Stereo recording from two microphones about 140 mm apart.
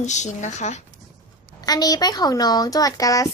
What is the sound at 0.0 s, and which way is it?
Speech, 55° left (ahead or behind).